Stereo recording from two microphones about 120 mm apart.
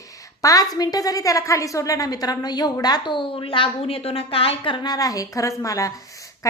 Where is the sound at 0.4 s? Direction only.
30° left (ahead or behind).